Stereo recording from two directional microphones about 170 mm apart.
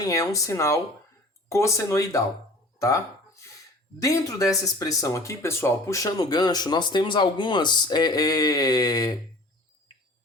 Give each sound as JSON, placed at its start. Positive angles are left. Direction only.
{"t": 0.0, "sound": "speech", "side_deg": 20}
{"t": 4.0, "sound": "speech", "side_deg": 20}